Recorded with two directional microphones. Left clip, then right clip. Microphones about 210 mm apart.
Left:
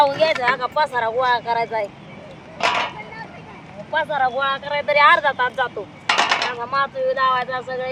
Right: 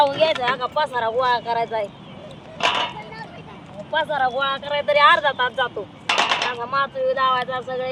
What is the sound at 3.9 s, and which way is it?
Speech, 10° right (ahead or behind).